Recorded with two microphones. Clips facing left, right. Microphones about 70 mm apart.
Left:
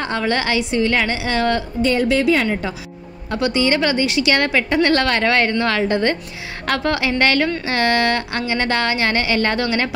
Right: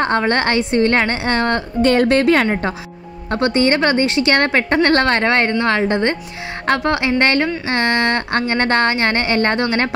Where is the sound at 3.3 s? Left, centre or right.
Right.